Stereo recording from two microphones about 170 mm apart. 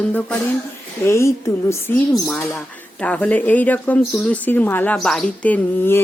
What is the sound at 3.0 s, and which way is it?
Speech, 10° left (ahead or behind).